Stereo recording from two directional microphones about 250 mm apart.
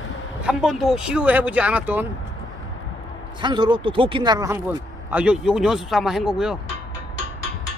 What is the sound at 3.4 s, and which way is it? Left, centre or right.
Speech, centre.